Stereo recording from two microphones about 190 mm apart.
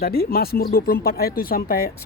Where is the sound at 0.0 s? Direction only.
50° left (ahead or behind).